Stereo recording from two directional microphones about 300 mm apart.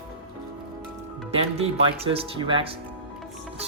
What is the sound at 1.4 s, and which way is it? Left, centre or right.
Speech, centre.